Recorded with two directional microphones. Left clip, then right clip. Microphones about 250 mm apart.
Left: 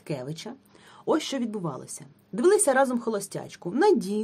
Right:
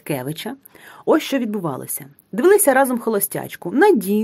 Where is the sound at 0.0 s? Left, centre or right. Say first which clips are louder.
Right 9 dB; right.